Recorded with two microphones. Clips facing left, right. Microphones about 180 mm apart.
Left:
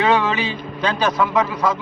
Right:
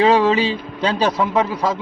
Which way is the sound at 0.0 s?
30° right (ahead or behind).